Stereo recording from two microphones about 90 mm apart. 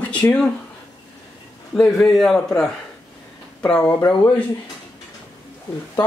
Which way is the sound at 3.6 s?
10° left (ahead or behind).